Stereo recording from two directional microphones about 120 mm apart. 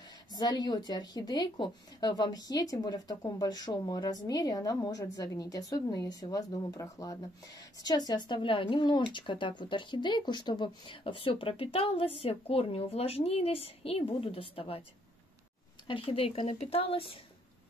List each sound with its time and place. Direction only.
0.3 s a woman's voice: 35° left (ahead or behind); by 14.8 s 50° left (ahead or behind)
15.9 s a woman's voice: 50° left (ahead or behind)